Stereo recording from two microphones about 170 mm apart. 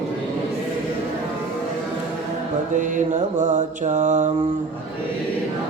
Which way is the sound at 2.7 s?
50° right (ahead or behind).